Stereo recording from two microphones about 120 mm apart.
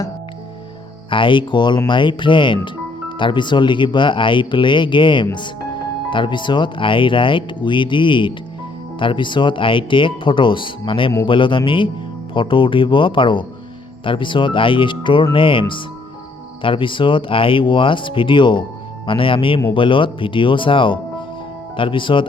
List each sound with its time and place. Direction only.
1.1 s speech: 45° left (ahead or behind)